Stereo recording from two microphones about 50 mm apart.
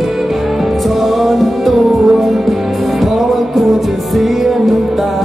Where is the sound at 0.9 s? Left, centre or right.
Centre.